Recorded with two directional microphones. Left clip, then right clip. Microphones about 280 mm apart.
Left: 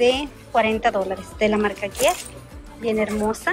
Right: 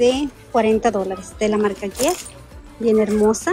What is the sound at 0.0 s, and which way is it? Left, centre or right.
Speech, centre.